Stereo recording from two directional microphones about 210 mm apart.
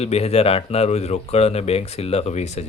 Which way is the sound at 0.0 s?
30° left (ahead or behind).